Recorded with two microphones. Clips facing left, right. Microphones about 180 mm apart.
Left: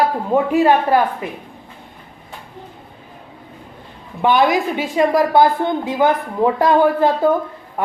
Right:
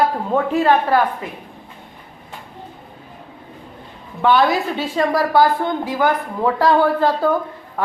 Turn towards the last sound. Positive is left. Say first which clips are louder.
# left 2 dB
turn(degrees=20)  # may be behind; listen again after turning